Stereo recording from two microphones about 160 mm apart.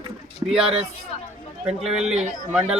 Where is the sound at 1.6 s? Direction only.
5° right (ahead or behind).